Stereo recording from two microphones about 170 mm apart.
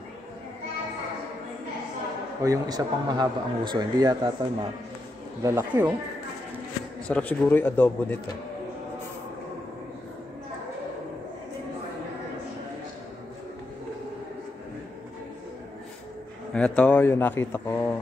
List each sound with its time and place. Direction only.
2.4 s speech: 20° right (ahead or behind)
5.4 s speech: 15° right (ahead or behind)
7.1 s speech: 10° left (ahead or behind)
16.5 s speech: 5° left (ahead or behind)